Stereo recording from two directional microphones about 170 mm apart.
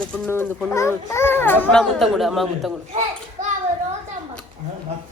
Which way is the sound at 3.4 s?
45° right (ahead or behind).